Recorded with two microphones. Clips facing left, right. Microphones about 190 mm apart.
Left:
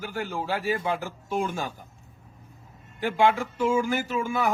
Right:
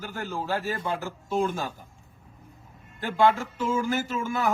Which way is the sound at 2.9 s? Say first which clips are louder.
Even; 15° left (ahead or behind).